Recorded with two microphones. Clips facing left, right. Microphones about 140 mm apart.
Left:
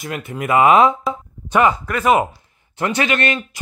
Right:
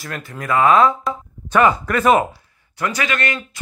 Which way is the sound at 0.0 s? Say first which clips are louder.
Left 4 dB; 20° left (ahead or behind).